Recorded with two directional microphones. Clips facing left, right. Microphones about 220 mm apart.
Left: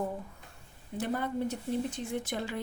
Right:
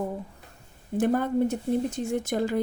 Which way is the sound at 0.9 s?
50° right (ahead or behind).